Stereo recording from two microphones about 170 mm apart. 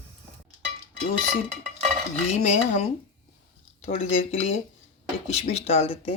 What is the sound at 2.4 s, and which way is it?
Speech, 40° left (ahead or behind).